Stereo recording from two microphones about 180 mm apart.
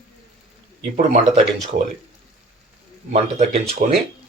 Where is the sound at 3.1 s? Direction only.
35° right (ahead or behind).